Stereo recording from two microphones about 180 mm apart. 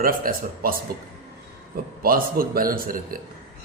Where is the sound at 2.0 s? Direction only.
55° right (ahead or behind).